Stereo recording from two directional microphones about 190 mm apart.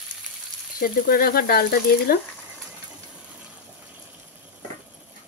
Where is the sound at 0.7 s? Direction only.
50° left (ahead or behind).